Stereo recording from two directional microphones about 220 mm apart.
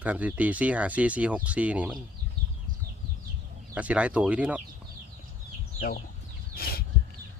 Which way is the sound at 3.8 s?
5° right (ahead or behind).